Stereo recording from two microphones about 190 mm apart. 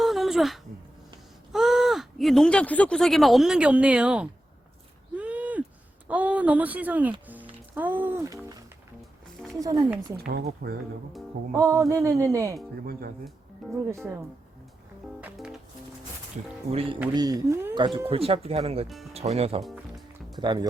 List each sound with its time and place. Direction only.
0.0 s a sound: centre (ahead or behind)
1.5 s speech: centre (ahead or behind)
5.1 s a sound: 10° right (ahead or behind)
6.1 s speech: 10° right (ahead or behind)
7.3 s music: 10° right (ahead or behind)
9.6 s speech: 20° right (ahead or behind)
10.2 s speech: 55° right (ahead or behind)
11.5 s speech: 15° right (ahead or behind)
12.8 s speech: 50° right (ahead or behind)
13.9 s speech: 15° right (ahead or behind)
15.2 s speech: 5° right (ahead or behind)
17.2 s speech: 20° right (ahead or behind)
17.7 s speech: 25° right (ahead or behind)